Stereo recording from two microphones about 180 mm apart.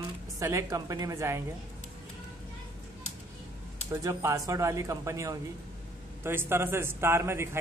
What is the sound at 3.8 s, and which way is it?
A man's voice, 15° right (ahead or behind).